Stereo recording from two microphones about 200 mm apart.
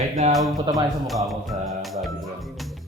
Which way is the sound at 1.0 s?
Centre (ahead or behind).